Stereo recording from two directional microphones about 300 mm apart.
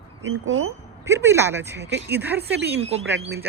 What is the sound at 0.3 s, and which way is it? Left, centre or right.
Speech, right.